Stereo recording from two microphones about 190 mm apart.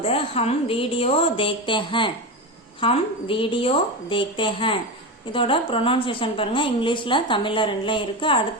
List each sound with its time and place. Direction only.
0.0 s a woman's voice: 30° left (ahead or behind)